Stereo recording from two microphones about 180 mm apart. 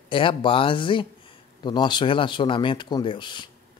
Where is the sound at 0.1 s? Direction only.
30° left (ahead or behind).